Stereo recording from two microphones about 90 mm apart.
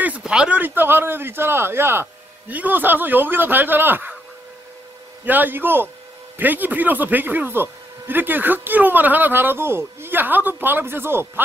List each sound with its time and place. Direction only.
0.2 s a sound: 10° right (ahead or behind)
0.6 s speech: 20° right (ahead or behind)
5.2 s speech: 20° right (ahead or behind)